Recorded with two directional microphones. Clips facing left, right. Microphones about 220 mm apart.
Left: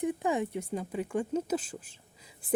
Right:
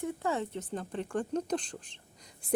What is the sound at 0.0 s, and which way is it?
Speech, 15° left (ahead or behind).